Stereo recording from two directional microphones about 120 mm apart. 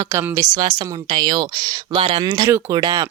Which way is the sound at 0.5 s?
35° right (ahead or behind).